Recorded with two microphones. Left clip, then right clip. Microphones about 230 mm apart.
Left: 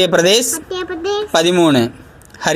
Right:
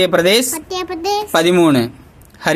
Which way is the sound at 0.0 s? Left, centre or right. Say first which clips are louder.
Left 1 dB; centre.